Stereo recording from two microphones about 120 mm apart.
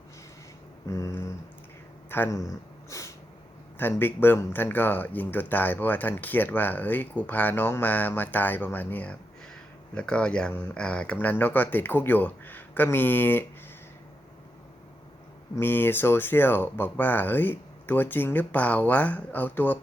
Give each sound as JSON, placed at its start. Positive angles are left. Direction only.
{"t": 0.9, "sound": "a sound", "side_deg": 25}
{"t": 3.8, "sound": "speech", "side_deg": 15}
{"t": 15.5, "sound": "speech", "side_deg": 15}